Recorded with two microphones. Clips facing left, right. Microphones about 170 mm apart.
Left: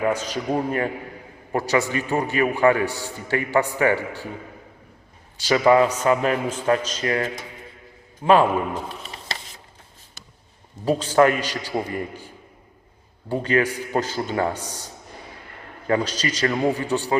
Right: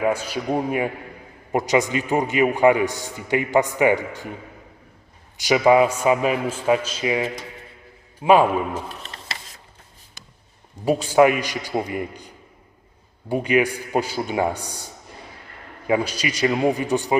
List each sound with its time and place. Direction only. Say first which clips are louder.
0.0 s a man's voice: right 1 dB; 10° right (ahead or behind)
5.4 s a man's voice: right 1 dB; 15° right (ahead or behind)
8.9 s a sound: left 1 dB; centre (ahead or behind)
10.8 s a man's voice: right 1 dB; 10° right (ahead or behind)
15.9 s a man's voice: right 1 dB; 10° right (ahead or behind)